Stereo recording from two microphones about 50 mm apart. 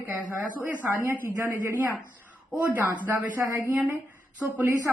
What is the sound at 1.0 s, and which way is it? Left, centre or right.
Speech, right.